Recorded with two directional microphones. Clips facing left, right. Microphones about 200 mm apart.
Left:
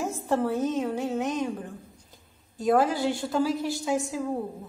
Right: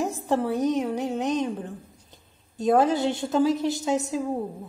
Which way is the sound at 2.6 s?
20° right (ahead or behind).